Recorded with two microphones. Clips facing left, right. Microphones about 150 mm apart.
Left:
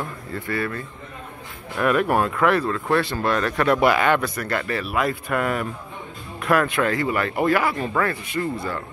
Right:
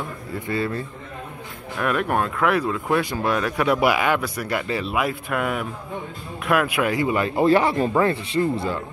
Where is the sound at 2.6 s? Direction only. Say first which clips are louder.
Even; 10° right (ahead or behind).